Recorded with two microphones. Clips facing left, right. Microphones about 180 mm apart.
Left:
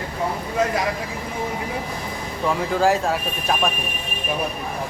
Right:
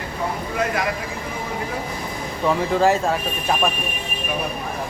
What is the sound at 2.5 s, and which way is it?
Speech, centre (ahead or behind).